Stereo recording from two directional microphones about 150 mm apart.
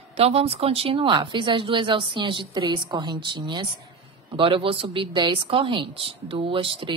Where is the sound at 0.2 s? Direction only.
40° right (ahead or behind).